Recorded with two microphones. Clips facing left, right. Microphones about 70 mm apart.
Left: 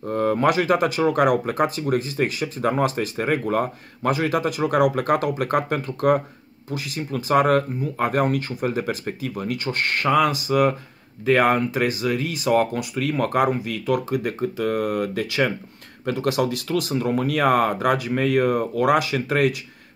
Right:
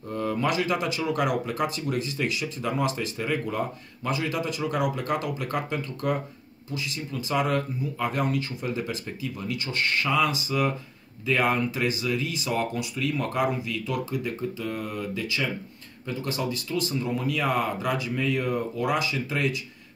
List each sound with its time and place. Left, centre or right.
0.0 s speech: left